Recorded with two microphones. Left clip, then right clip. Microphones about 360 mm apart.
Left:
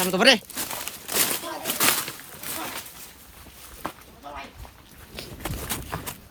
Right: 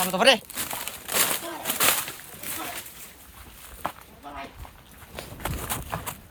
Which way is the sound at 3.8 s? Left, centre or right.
Centre.